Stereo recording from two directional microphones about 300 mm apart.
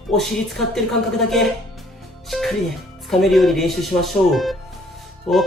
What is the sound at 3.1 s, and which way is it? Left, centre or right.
Speech, centre.